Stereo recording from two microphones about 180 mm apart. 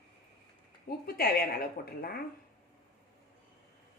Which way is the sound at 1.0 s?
55° left (ahead or behind).